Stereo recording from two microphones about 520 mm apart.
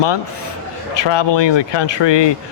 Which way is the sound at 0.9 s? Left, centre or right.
Left.